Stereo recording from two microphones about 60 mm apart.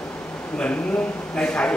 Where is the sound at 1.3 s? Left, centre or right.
Centre.